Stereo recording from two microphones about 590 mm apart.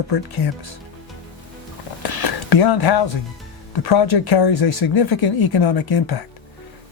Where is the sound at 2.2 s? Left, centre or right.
Left.